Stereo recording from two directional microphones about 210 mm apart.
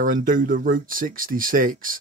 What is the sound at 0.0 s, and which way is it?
Speech, 40° right (ahead or behind).